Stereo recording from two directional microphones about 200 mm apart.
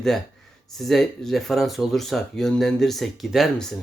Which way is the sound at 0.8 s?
Centre (ahead or behind).